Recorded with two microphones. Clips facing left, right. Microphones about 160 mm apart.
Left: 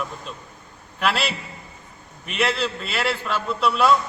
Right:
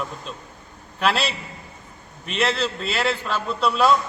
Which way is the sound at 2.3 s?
30° right (ahead or behind).